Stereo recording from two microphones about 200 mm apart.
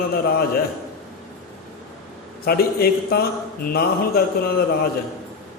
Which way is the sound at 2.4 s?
50° left (ahead or behind).